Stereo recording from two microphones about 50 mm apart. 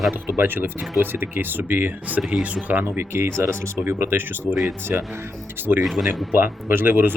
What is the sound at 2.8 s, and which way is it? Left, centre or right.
Speech, right.